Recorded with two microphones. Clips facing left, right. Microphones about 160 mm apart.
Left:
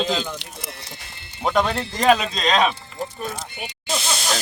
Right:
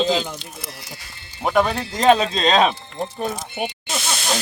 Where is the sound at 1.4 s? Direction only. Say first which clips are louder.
Right 2 dB; 5° right (ahead or behind).